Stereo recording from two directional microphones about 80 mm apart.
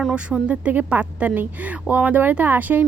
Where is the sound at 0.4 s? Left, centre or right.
Centre.